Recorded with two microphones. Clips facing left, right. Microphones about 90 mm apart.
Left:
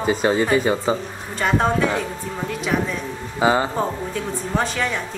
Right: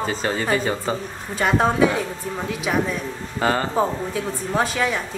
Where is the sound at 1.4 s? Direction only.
5° right (ahead or behind).